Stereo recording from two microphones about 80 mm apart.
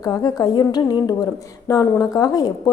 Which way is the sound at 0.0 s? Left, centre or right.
Left.